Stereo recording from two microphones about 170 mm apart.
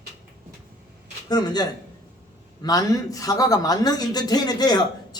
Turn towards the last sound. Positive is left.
turn(degrees=25)  # may be behind; listen again after turning